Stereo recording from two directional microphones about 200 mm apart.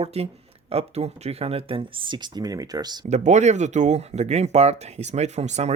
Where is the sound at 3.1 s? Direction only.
35° right (ahead or behind).